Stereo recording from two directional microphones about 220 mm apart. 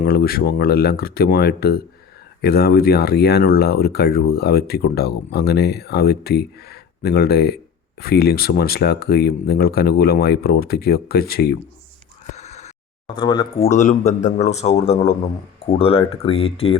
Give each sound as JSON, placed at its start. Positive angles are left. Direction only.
{"t": 0.0, "sound": "speech", "side_deg": 45}
{"t": 12.3, "sound": "neigh", "side_deg": 30}
{"t": 13.1, "sound": "a man's voice", "side_deg": 20}
{"t": 13.7, "sound": "a man's voice", "side_deg": 30}